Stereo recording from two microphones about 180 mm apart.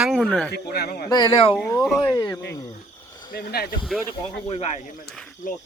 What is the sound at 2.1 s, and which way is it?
Speech, 20° left (ahead or behind).